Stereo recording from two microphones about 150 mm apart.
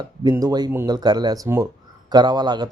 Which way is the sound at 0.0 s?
25° right (ahead or behind).